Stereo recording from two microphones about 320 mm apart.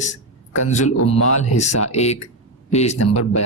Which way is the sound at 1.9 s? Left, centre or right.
Centre.